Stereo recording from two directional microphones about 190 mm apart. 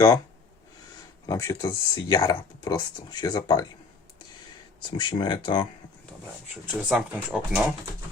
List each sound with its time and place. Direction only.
1.3 s speech: 15° left (ahead or behind)
4.8 s speech: 25° left (ahead or behind)
6.7 s speech: 5° right (ahead or behind)